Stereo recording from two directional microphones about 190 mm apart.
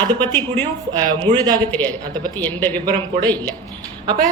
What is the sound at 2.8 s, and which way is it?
Speech, 20° right (ahead or behind).